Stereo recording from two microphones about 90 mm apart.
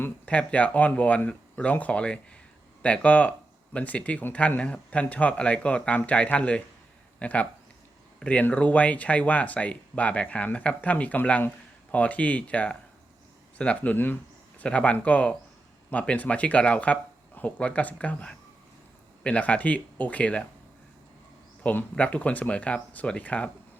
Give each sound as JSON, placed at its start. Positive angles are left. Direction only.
{"t": 0.0, "sound": "speech", "side_deg": 15}
{"t": 21.6, "sound": "speech", "side_deg": 15}